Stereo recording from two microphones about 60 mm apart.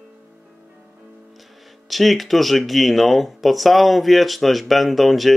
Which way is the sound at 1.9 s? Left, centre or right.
Centre.